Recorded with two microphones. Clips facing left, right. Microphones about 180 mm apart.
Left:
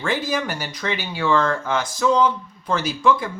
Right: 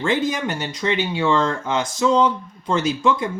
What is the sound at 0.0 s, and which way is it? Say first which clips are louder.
Speech: right 2 dB; 20° right (ahead or behind).